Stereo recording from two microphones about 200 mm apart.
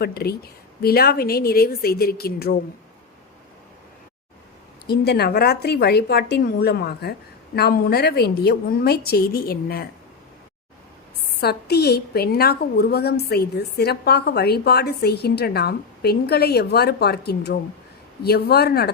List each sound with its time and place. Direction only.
0.0 s a woman's voice: 50° left (ahead or behind)
4.9 s a woman's voice: 55° left (ahead or behind)
11.3 s a woman's voice: 55° left (ahead or behind)